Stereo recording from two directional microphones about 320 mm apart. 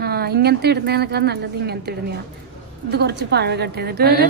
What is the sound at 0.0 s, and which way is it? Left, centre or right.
A woman's voice, right.